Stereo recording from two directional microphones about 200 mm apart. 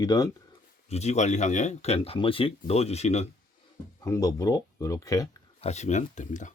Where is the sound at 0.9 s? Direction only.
35° left (ahead or behind).